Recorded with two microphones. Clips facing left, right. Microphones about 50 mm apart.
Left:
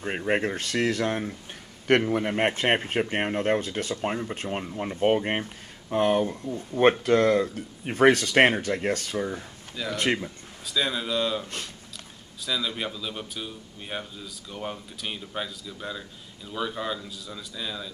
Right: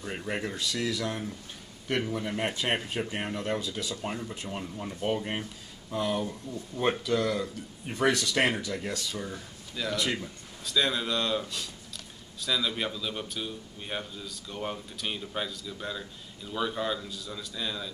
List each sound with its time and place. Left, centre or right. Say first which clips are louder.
0.3 s speech: left 7 dB; left
9.8 s speech: left 4 dB; centre
12.4 s speech: even; centre